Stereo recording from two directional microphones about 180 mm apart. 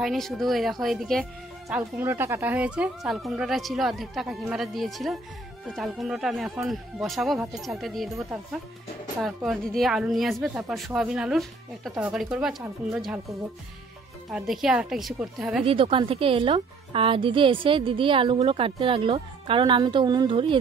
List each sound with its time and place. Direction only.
0.0 s speech: centre (ahead or behind)
1.7 s speech: 10° right (ahead or behind)
9.2 s speech: centre (ahead or behind)
15.6 s a woman's voice: 30° right (ahead or behind)